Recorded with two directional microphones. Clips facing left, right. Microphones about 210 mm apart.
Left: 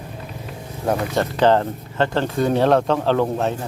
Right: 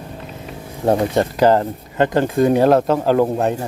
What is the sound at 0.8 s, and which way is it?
Speech, 30° right (ahead or behind).